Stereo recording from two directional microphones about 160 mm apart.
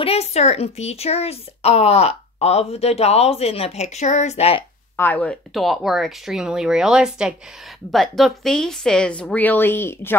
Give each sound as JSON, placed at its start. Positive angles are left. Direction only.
{"t": 0.0, "sound": "speech", "side_deg": 40}
{"t": 4.9, "sound": "speech", "side_deg": 10}